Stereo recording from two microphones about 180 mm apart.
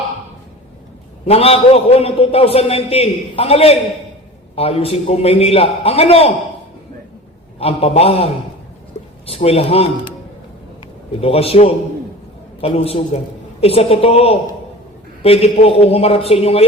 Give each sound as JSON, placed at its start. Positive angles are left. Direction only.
{"t": 1.3, "sound": "a man's voice", "side_deg": 35}
{"t": 7.6, "sound": "a man's voice", "side_deg": 35}
{"t": 11.2, "sound": "a man's voice", "side_deg": 35}